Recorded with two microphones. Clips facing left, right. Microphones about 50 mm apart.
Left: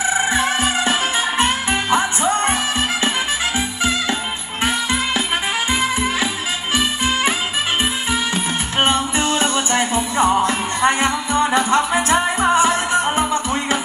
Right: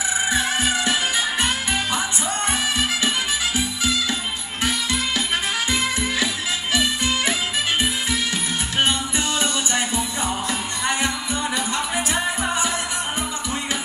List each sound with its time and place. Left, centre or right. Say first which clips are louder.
0.3 s music: left 3 dB; left
3.5 s music: left 3 dB; left
5.7 s music: left 4 dB; left
8.7 s music: left 5 dB; left